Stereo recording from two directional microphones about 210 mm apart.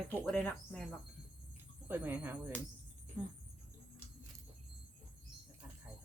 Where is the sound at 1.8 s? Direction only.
10° right (ahead or behind).